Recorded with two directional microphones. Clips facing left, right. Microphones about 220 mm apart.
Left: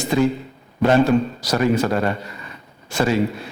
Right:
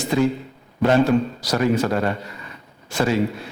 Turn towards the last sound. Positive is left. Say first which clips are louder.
# left 1 dB
turn(degrees=15)  # may be behind; listen again after turning